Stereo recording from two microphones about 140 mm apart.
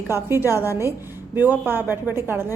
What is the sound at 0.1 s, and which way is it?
A woman's voice, 15° right (ahead or behind).